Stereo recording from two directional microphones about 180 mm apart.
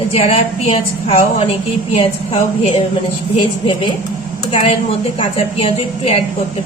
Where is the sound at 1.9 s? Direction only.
30° left (ahead or behind).